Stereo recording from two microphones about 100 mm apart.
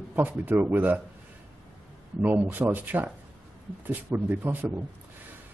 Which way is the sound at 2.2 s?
15° right (ahead or behind).